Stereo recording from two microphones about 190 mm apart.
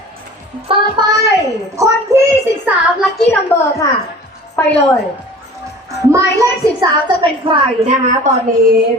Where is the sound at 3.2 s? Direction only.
10° left (ahead or behind).